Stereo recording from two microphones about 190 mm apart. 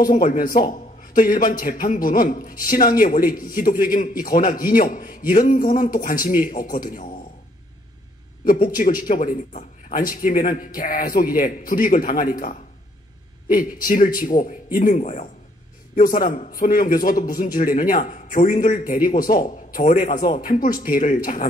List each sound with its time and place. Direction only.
0.0 s a man's voice: 45° left (ahead or behind)
8.6 s a man's voice: 45° left (ahead or behind)